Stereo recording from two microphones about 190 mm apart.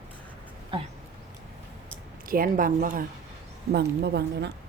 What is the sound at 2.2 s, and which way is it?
A woman's voice, 50° right (ahead or behind).